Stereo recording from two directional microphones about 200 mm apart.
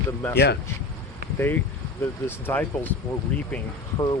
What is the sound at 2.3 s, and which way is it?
Speech, 10° left (ahead or behind).